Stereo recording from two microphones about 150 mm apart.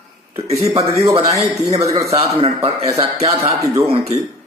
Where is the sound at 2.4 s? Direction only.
40° right (ahead or behind).